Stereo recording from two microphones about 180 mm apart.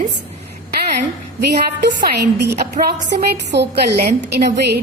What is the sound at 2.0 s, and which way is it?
A woman's voice, 65° right (ahead or behind).